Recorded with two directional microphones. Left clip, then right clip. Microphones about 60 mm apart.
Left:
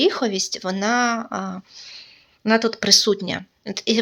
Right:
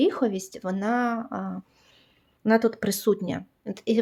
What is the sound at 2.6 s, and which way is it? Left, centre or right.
Speech, right.